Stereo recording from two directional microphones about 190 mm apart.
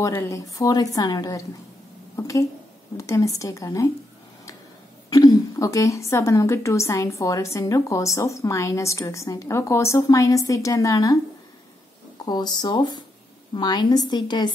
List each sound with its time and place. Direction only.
0.0 s a woman's voice: 15° left (ahead or behind)
5.1 s a woman's voice: 20° left (ahead or behind)
12.3 s a woman's voice: 20° left (ahead or behind)